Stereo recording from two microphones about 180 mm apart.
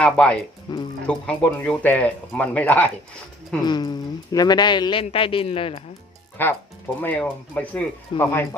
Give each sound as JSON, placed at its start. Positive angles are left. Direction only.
{"t": 0.0, "sound": "speech", "side_deg": 5}
{"t": 0.7, "sound": "speech", "side_deg": 25}
{"t": 1.0, "sound": "speech", "side_deg": 5}
{"t": 3.6, "sound": "speech", "side_deg": 25}
{"t": 6.4, "sound": "speech", "side_deg": 10}